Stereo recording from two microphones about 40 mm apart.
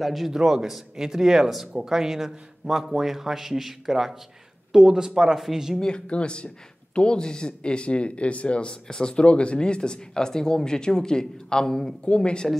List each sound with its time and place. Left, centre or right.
0.0 s a man's voice: centre
5.8 s speech: left
12.0 s speech: left